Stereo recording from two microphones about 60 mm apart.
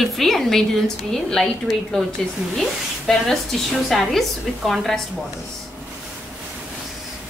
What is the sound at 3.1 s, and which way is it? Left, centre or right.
A woman's voice, centre.